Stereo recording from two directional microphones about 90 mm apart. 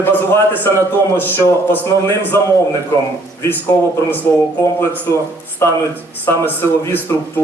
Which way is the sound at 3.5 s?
20° left (ahead or behind).